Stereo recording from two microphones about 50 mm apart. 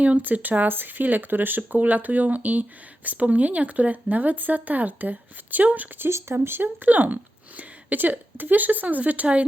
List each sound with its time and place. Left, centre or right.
0.0 s speech: right
6.1 s speech: right
6.3 s speech: right
6.8 s a woman's voice: right